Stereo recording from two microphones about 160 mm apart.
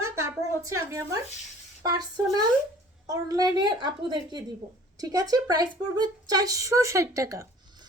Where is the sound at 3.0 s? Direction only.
25° right (ahead or behind).